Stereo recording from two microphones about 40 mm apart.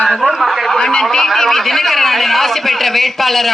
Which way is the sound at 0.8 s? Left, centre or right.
Centre.